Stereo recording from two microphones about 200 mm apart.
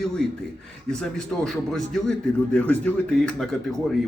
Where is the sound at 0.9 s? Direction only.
5° left (ahead or behind).